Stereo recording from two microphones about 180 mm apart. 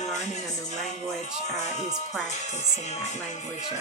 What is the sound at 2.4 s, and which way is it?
Speech, 40° left (ahead or behind).